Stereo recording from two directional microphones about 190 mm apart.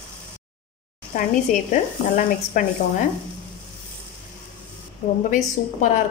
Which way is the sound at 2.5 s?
45° left (ahead or behind).